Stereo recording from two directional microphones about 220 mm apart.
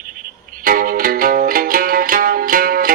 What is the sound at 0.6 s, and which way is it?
Music, 40° right (ahead or behind).